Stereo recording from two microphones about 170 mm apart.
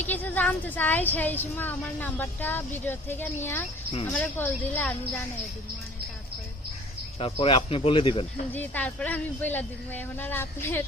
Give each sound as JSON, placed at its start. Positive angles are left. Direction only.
{"t": 0.0, "sound": "a woman's voice", "side_deg": 10}
{"t": 7.2, "sound": "speech", "side_deg": 30}
{"t": 8.5, "sound": "a woman's voice", "side_deg": 10}